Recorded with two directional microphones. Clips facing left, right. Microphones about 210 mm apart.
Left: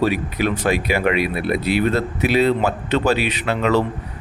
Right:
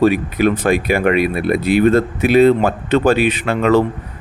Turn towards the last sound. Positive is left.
turn(degrees=-50)  # may be behind; listen again after turning